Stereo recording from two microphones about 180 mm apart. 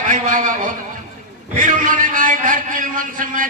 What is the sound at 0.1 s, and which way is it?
Speech, 45° right (ahead or behind).